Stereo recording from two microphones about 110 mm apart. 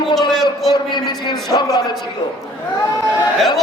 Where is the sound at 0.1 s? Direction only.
Centre (ahead or behind).